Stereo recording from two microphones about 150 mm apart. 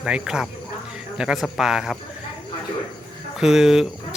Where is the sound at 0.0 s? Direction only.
5° right (ahead or behind).